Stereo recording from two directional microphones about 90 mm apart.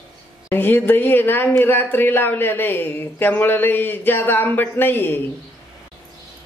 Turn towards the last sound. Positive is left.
turn(degrees=25)  # may be behind; listen again after turning